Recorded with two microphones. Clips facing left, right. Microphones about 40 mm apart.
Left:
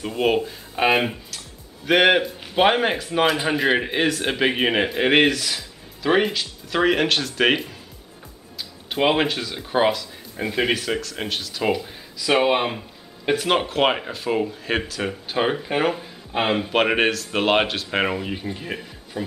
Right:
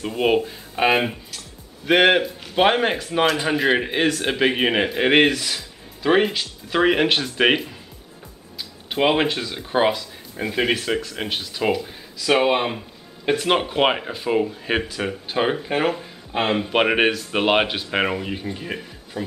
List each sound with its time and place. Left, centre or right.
0.0 s speech: centre